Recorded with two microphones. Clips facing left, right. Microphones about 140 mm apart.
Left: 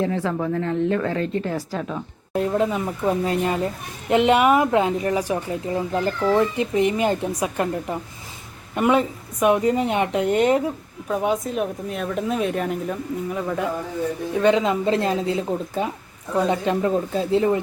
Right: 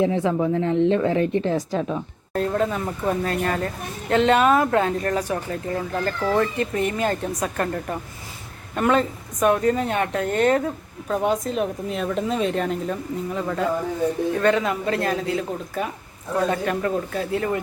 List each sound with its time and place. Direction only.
0.0 s speech: 20° right (ahead or behind)
2.3 s speech: 15° left (ahead or behind)
11.1 s speech: 5° left (ahead or behind)
14.4 s speech: 20° left (ahead or behind)